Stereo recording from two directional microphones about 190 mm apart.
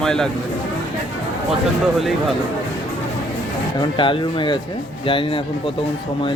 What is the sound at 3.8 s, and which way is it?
Speech, 25° left (ahead or behind).